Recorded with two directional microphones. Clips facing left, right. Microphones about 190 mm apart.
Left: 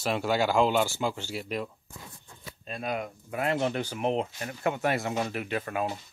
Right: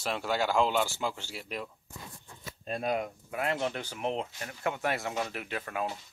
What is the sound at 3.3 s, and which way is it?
Speech, centre (ahead or behind).